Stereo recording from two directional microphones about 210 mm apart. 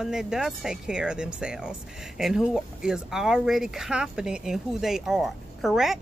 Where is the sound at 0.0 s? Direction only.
5° right (ahead or behind).